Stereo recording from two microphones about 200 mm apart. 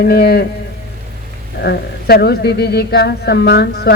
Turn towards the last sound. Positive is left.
turn(degrees=55)  # may be behind; listen again after turning